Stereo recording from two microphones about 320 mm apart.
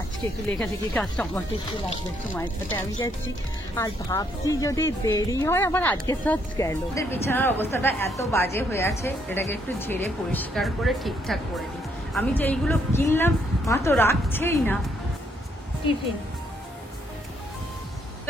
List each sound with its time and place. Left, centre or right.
0.5 s speech: centre
3.7 s a woman's voice: centre